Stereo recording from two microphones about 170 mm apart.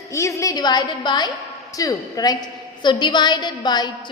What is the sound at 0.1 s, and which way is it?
A woman's voice, 15° left (ahead or behind).